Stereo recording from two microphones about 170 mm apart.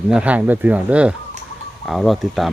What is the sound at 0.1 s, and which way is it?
Speech, 5° right (ahead or behind).